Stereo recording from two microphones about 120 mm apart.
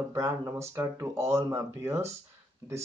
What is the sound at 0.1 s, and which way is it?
Speech, 20° right (ahead or behind).